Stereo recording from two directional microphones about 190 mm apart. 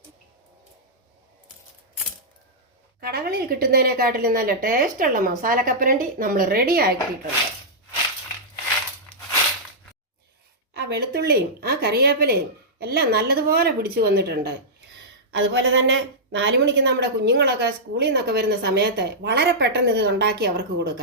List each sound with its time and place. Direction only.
3.0 s a woman's voice: 55° right (ahead or behind)
10.8 s a woman's voice: 60° right (ahead or behind)
15.3 s a woman's voice: 70° right (ahead or behind)